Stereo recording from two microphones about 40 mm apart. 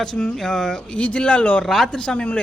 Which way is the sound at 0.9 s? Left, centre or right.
Left.